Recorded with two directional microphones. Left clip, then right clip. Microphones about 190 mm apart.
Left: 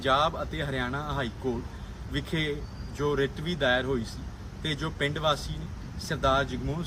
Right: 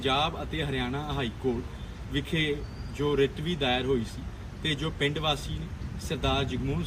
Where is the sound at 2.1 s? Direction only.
50° left (ahead or behind).